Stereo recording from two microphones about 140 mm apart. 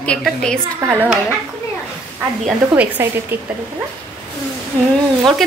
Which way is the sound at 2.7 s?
20° right (ahead or behind).